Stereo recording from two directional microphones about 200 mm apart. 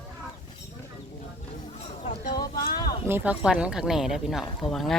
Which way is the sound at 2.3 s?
20° left (ahead or behind).